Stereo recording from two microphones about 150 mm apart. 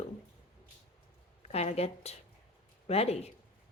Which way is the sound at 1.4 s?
45° left (ahead or behind).